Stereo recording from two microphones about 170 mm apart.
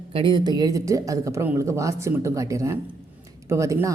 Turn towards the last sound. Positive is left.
turn(degrees=-20)  # may be behind; listen again after turning